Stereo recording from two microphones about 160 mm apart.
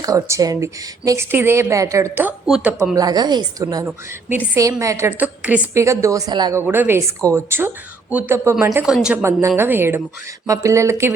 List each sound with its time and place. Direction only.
0.0 s speech: 20° right (ahead or behind)
2.5 s speech: 5° right (ahead or behind)
2.9 s speech: 25° right (ahead or behind)
3.8 s a woman's voice: 10° right (ahead or behind)
6.6 s a woman's voice: 15° right (ahead or behind)
9.6 s a woman's voice: 15° right (ahead or behind)